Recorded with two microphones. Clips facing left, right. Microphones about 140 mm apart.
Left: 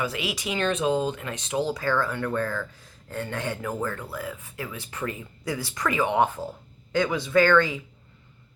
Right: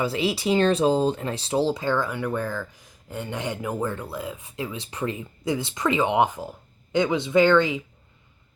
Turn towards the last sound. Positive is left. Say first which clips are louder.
# right 2 dB
turn(degrees=-20)  # may be behind; listen again after turning